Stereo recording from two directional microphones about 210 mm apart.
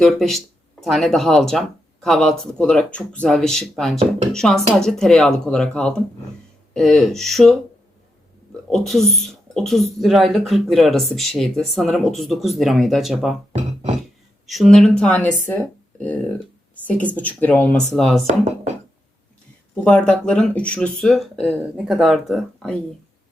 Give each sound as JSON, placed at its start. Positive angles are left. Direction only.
{"t": 0.0, "sound": "speech", "side_deg": 0}
{"t": 8.7, "sound": "speech", "side_deg": 0}
{"t": 14.4, "sound": "speech", "side_deg": 0}
{"t": 16.8, "sound": "speech", "side_deg": 5}
{"t": 18.3, "sound": "speech", "side_deg": -30}
{"t": 19.7, "sound": "speech", "side_deg": 5}